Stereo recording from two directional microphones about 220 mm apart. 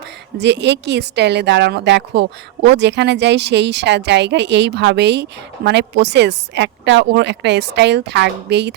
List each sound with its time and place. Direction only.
0.3 s speech: 50° right (ahead or behind)